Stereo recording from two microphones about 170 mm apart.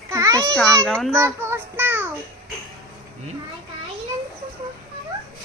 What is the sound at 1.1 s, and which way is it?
Child singing, 15° right (ahead or behind).